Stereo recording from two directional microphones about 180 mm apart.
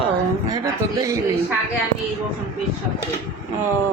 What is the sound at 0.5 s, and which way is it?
Speech, 15° right (ahead or behind).